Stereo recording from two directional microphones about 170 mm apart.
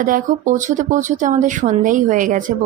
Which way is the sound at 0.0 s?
50° right (ahead or behind).